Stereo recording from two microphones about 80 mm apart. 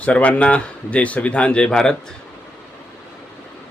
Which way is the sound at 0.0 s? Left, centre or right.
Centre.